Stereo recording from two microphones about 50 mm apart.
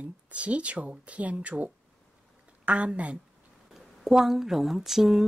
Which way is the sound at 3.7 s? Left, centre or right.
Centre.